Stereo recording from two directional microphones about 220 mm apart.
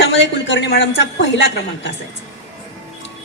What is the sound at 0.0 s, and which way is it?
Speech, 55° left (ahead or behind).